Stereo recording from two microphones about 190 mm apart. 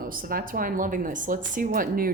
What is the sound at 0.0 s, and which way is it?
Speech, 50° right (ahead or behind).